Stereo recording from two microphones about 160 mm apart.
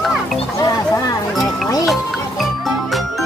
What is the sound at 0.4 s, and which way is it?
Music, 25° left (ahead or behind).